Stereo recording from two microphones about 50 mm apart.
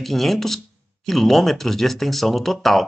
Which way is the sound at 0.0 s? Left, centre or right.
Centre.